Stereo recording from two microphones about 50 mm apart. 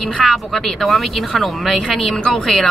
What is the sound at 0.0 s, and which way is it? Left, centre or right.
Speech, centre.